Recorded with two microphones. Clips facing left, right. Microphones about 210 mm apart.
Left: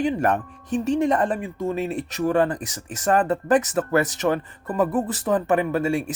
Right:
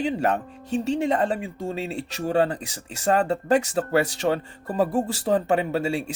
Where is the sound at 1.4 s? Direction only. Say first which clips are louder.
Left 4 dB; 30° right (ahead or behind).